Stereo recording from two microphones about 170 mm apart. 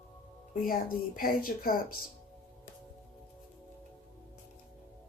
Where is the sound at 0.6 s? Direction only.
55° left (ahead or behind).